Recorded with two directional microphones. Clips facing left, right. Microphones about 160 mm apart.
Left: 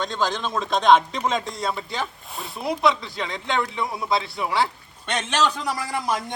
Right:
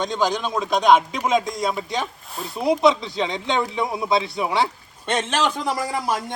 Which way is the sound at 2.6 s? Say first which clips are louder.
Right 5 dB; 20° right (ahead or behind).